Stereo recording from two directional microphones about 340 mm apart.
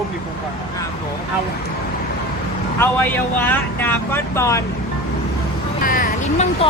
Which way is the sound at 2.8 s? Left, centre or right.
Centre.